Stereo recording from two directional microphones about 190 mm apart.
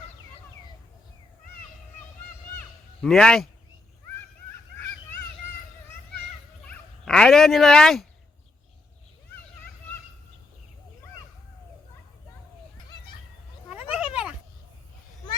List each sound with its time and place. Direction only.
3.0 s a man's voice: 5° left (ahead or behind)
7.0 s a sound: 5° left (ahead or behind)
13.9 s cat: 5° right (ahead or behind)